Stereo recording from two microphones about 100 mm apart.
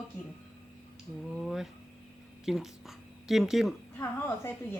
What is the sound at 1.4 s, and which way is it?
Speech, centre (ahead or behind).